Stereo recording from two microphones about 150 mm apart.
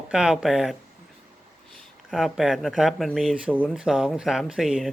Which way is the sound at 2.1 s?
Centre (ahead or behind).